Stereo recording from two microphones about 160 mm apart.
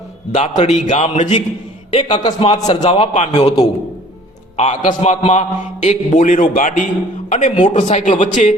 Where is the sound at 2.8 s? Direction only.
35° left (ahead or behind).